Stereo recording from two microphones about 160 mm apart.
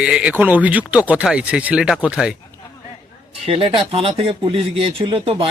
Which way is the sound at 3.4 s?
35° right (ahead or behind).